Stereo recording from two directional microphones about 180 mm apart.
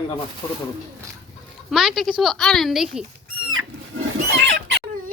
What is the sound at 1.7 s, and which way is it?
Speech, centre (ahead or behind).